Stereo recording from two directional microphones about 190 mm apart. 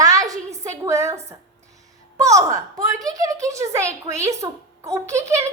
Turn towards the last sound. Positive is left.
turn(degrees=-15)  # may be behind; listen again after turning